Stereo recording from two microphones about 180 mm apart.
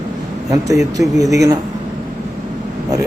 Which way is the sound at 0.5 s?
20° right (ahead or behind).